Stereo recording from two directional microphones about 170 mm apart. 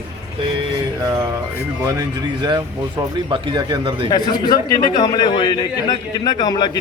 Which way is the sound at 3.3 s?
30° right (ahead or behind).